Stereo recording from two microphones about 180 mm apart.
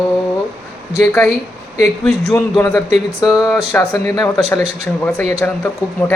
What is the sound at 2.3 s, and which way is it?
Speech, 10° left (ahead or behind).